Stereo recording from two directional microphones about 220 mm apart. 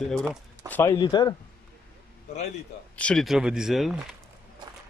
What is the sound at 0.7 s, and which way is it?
Speech, 10° left (ahead or behind).